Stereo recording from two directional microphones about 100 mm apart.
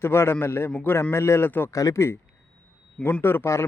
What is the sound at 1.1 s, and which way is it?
Speech, 25° left (ahead or behind).